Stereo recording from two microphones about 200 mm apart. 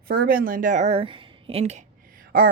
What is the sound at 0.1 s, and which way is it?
A woman's voice, 45° right (ahead or behind).